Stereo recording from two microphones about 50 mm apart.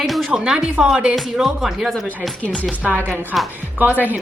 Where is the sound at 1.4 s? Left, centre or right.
Centre.